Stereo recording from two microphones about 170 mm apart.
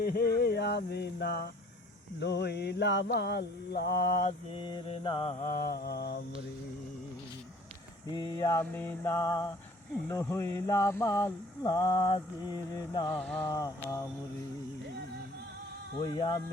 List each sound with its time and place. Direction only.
0.0 s mantra: 60° left (ahead or behind)
4.5 s mantra: 25° left (ahead or behind)
5.4 s mantra: 55° left (ahead or behind)
8.1 s mantra: 25° left (ahead or behind)
8.5 s mantra: 10° left (ahead or behind)
13.1 s mantra: 10° left (ahead or behind)
13.5 s mantra: 20° left (ahead or behind)
16.0 s mantra: 25° left (ahead or behind)